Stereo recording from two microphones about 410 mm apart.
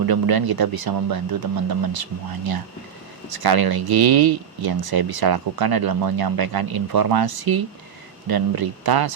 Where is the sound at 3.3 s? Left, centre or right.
Right.